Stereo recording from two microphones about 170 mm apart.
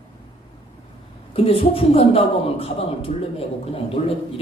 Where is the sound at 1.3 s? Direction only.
35° left (ahead or behind).